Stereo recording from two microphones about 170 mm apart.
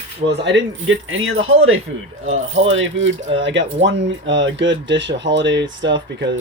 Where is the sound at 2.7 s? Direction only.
90° right.